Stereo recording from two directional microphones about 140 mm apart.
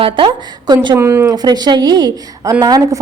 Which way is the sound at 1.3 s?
30° right (ahead or behind).